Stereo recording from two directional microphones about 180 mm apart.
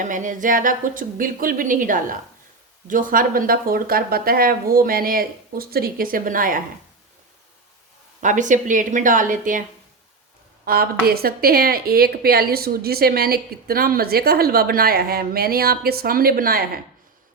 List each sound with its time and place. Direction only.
0.0 s speech: 45° right (ahead or behind)
8.2 s speech: 45° right (ahead or behind)
10.7 s a woman's voice: 60° right (ahead or behind)